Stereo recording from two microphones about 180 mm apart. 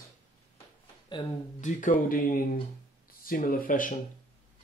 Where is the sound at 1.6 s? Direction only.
50° left (ahead or behind).